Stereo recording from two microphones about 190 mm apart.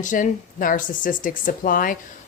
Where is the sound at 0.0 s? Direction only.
45° left (ahead or behind).